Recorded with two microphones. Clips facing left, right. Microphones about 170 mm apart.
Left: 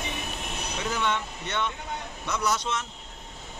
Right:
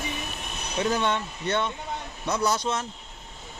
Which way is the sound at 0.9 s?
35° right (ahead or behind).